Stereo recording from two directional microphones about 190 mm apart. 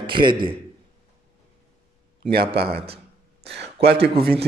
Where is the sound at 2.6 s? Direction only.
60° right (ahead or behind).